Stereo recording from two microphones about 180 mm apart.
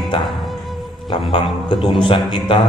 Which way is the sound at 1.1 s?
25° left (ahead or behind).